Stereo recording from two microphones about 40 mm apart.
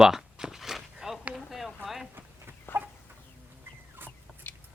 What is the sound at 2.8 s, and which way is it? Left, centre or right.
Chicken, right.